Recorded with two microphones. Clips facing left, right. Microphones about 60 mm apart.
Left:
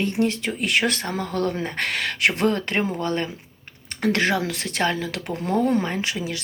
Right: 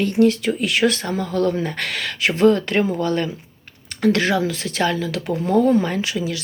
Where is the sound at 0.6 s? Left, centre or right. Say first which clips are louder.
Right 3 dB; left.